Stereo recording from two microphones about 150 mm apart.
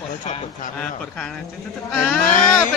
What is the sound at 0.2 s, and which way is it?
Speech, 55° left (ahead or behind).